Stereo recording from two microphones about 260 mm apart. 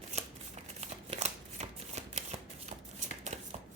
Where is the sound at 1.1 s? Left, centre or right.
Right.